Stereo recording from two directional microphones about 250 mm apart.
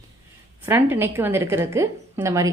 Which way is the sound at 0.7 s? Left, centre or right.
Centre.